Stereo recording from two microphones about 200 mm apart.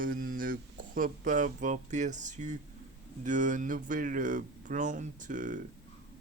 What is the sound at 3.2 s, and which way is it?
Speech, 40° right (ahead or behind).